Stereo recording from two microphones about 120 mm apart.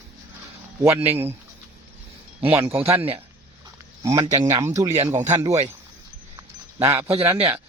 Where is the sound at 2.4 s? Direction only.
20° right (ahead or behind).